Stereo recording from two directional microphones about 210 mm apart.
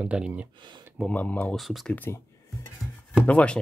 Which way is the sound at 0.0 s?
5° right (ahead or behind).